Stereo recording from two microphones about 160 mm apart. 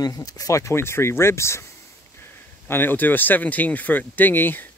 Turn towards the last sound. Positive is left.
turn(degrees=10)  # may be behind; listen again after turning